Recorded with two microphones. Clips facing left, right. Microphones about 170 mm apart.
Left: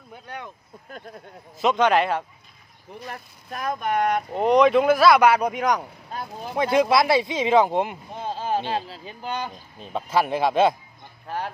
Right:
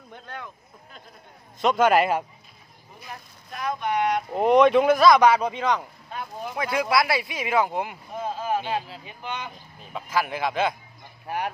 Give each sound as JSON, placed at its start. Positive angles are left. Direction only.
{"t": 0.1, "sound": "speech", "side_deg": 15}
{"t": 1.6, "sound": "speech", "side_deg": 0}
{"t": 3.5, "sound": "speech", "side_deg": 50}
{"t": 4.3, "sound": "speech", "side_deg": 0}
{"t": 6.1, "sound": "speech", "side_deg": 25}
{"t": 11.2, "sound": "speech", "side_deg": -15}